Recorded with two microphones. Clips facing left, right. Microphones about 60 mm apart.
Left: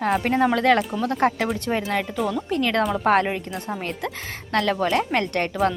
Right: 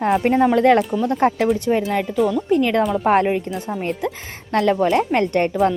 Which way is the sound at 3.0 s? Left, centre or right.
Centre.